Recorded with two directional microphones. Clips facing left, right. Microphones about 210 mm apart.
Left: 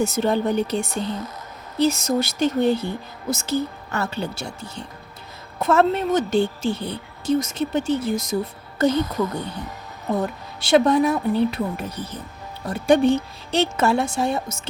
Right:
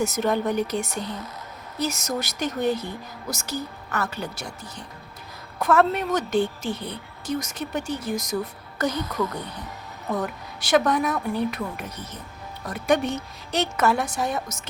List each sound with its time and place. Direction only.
0.0 s a woman's voice: 30° left (ahead or behind)